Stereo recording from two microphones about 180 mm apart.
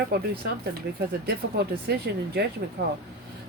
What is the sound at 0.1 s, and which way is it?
Speech, 65° right (ahead or behind).